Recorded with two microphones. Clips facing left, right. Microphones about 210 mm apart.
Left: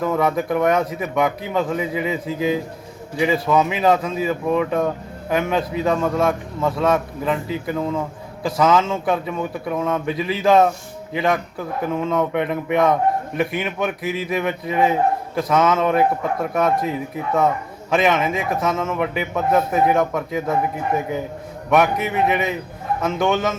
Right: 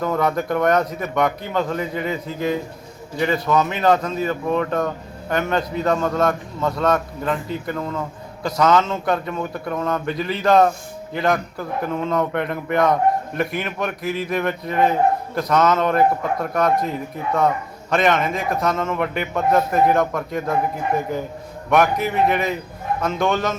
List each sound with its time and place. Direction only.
0.0 s a man's voice: 5° left (ahead or behind)
17.9 s a man's voice: 5° left (ahead or behind)